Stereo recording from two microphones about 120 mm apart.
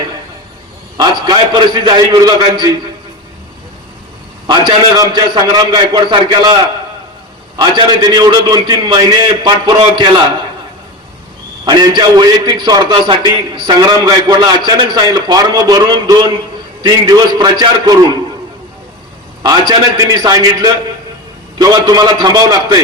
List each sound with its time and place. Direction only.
0.9 s a man's voice: 40° right (ahead or behind)
4.4 s a man's voice: 40° right (ahead or behind)
11.6 s a man's voice: 35° right (ahead or behind)
19.4 s a man's voice: 35° right (ahead or behind)